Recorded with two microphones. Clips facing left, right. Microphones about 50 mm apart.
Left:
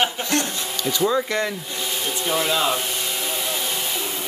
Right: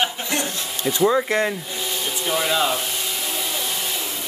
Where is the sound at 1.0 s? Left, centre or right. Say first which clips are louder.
Right 3 dB; centre.